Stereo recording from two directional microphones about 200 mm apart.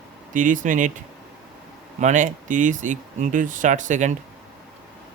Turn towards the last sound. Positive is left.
turn(degrees=-35)  # may be behind; listen again after turning